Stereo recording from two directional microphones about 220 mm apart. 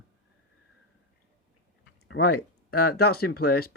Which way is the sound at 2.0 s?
50° left (ahead or behind).